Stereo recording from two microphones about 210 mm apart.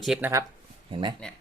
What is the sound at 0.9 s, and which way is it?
Speech, 20° right (ahead or behind).